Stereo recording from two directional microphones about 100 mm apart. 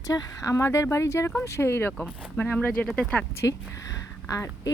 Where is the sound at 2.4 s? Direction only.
15° left (ahead or behind).